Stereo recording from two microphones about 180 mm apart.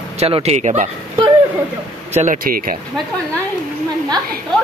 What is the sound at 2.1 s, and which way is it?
Speech, 45° right (ahead or behind).